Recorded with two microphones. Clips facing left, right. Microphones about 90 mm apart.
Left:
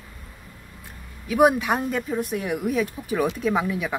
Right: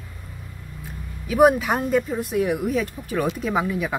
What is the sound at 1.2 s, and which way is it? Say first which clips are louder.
Speech: right 2 dB; centre (ahead or behind).